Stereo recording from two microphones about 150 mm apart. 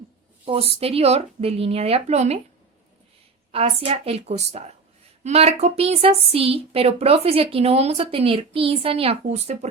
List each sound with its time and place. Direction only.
0.4 s a woman's voice: 40° right (ahead or behind)
3.5 s speech: 40° right (ahead or behind)